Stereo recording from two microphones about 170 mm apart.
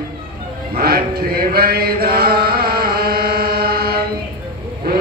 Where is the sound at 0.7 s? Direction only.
65° right (ahead or behind).